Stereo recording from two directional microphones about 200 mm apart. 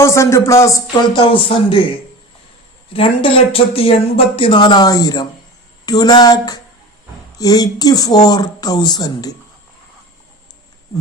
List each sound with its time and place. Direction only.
0.0 s speech: 15° left (ahead or behind)
1.2 s speech: 25° left (ahead or behind)
2.9 s speech: 25° left (ahead or behind)